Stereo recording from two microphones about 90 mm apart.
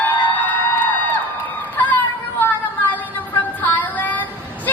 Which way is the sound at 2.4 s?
20° left (ahead or behind).